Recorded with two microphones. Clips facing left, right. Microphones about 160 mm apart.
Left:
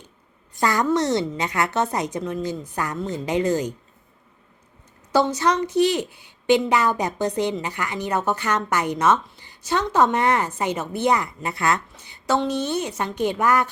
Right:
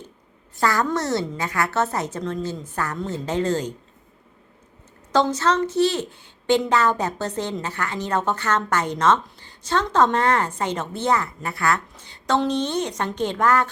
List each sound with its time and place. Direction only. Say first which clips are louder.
0.5 s a woman's voice: left 1 dB; 15° left (ahead or behind)
5.1 s a woman's voice: even; 10° left (ahead or behind)